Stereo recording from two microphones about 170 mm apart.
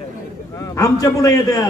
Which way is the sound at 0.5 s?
20° left (ahead or behind).